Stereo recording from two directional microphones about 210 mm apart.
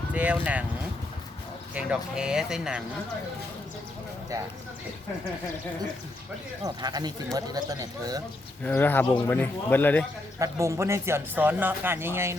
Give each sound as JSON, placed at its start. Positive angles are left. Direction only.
{"t": 0.1, "sound": "speech", "side_deg": -5}
{"t": 1.7, "sound": "speech", "side_deg": -5}
{"t": 6.8, "sound": "speech", "side_deg": -20}
{"t": 8.6, "sound": "a man's voice", "side_deg": 10}
{"t": 10.4, "sound": "speech", "side_deg": -15}